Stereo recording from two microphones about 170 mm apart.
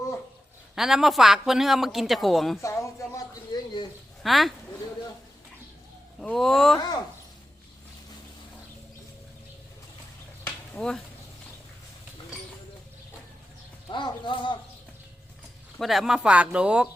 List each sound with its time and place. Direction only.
0.8 s speech: centre (ahead or behind)
2.6 s a sound: 15° left (ahead or behind)
4.2 s speech: centre (ahead or behind)
6.1 s speech: 5° left (ahead or behind)
6.7 s speech: 25° left (ahead or behind)
10.8 s speech: 5° left (ahead or behind)
13.9 s speech: 30° left (ahead or behind)
15.8 s speech: centre (ahead or behind)